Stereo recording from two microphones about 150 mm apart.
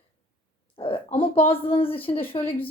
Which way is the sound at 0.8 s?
35° left (ahead or behind).